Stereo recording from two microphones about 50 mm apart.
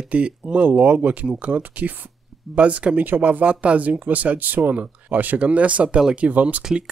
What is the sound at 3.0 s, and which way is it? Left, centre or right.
Speech, right.